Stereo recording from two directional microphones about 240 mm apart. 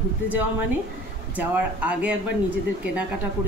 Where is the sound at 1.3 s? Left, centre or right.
Centre.